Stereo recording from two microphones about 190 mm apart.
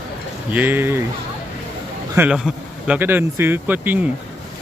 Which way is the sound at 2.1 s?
5° right (ahead or behind).